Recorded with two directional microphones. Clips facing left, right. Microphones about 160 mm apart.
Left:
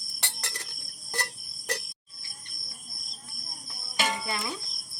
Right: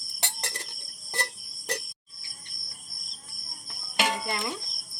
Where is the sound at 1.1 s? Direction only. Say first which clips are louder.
Right 1 dB; 25° right (ahead or behind).